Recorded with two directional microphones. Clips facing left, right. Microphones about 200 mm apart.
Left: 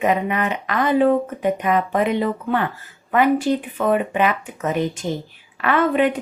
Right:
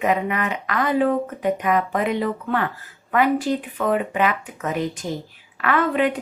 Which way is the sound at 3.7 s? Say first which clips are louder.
Left 2 dB; 20° left (ahead or behind).